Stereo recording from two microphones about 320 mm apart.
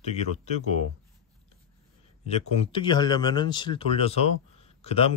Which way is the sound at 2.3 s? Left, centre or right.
Centre.